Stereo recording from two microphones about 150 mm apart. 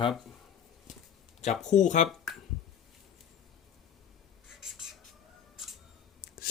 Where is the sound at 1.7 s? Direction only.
55° left (ahead or behind).